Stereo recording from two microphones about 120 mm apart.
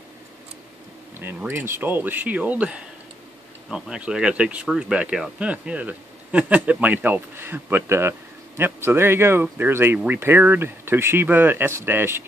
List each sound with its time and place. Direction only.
1.2 s speech: 20° right (ahead or behind)